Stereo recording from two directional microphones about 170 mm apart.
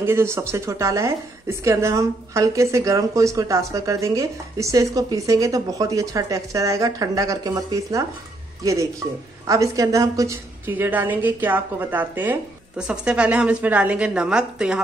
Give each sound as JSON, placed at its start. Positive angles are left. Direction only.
{"t": 0.0, "sound": "a woman's voice", "side_deg": -15}
{"t": 9.5, "sound": "a woman's voice", "side_deg": -20}